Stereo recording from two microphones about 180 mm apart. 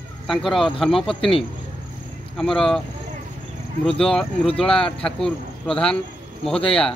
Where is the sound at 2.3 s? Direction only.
Centre (ahead or behind).